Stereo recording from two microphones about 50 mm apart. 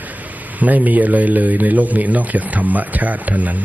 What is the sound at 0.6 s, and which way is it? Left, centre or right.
Speech, right.